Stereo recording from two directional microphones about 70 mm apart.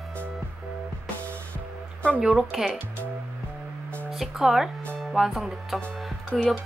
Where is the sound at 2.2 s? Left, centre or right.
Centre.